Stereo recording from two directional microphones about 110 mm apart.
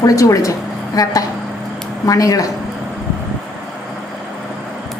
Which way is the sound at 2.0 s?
30° left (ahead or behind).